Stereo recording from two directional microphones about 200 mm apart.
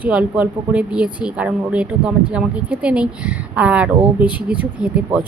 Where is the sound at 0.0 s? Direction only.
5° right (ahead or behind).